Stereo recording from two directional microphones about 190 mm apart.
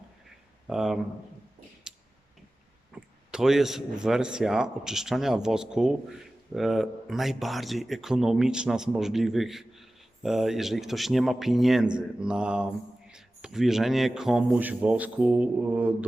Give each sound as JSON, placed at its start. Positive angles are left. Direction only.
{"t": 0.7, "sound": "speech", "side_deg": -5}
{"t": 1.9, "sound": "a sound", "side_deg": -5}
{"t": 2.9, "sound": "speech", "side_deg": -5}